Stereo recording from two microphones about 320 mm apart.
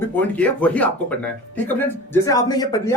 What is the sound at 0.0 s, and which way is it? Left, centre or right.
Speech, centre.